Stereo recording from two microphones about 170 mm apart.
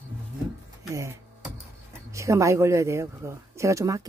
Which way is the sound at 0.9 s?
15° right (ahead or behind).